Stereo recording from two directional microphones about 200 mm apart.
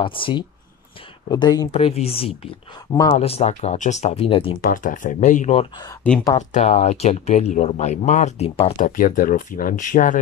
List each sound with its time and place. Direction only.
0.0 s speech: 25° left (ahead or behind)
1.7 s speech: 30° left (ahead or behind)
4.6 s speech: 40° left (ahead or behind)